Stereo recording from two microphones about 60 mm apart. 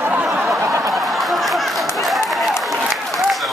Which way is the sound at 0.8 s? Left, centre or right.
Centre.